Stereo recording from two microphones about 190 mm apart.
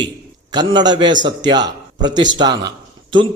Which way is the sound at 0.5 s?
20° right (ahead or behind).